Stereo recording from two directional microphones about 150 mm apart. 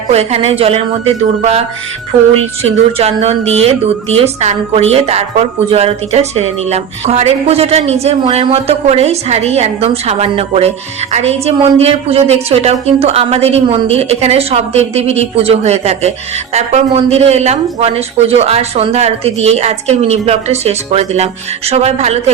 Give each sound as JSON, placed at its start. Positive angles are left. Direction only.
{"t": 0.1, "sound": "a woman's voice", "side_deg": -45}